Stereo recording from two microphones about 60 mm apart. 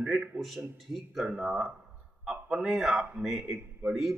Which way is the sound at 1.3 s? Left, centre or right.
Centre.